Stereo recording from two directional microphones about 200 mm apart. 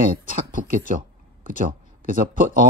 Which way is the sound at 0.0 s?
45° right (ahead or behind).